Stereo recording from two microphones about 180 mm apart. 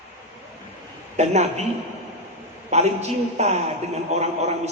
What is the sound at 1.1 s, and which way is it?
Speech, 40° right (ahead or behind).